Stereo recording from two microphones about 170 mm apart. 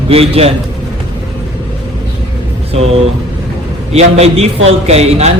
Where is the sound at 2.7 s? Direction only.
35° right (ahead or behind).